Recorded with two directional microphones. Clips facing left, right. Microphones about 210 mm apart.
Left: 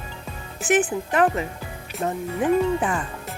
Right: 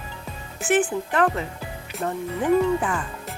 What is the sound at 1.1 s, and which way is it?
Speech, 15° left (ahead or behind).